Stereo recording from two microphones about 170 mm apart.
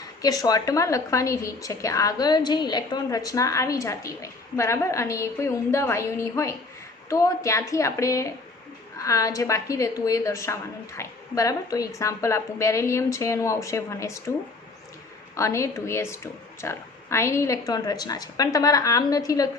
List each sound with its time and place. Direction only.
0.0 s a woman's voice: 20° left (ahead or behind)
15.4 s a woman's voice: 15° left (ahead or behind)